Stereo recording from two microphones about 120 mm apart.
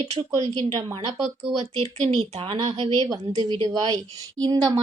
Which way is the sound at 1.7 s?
60° right (ahead or behind).